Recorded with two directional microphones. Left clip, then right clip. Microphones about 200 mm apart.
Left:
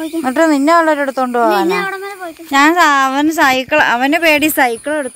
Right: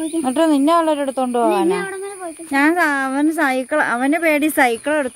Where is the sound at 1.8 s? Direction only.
10° right (ahead or behind).